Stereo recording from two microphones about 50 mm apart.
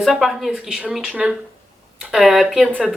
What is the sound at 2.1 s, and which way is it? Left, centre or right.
Speech, centre.